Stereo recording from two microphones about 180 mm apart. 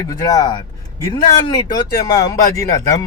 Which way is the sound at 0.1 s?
20° left (ahead or behind).